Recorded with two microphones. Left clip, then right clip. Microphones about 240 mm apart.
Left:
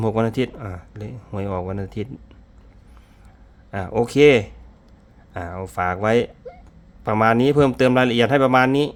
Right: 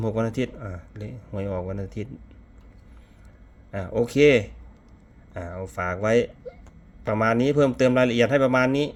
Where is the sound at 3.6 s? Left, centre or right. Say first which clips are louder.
Left 3 dB; left.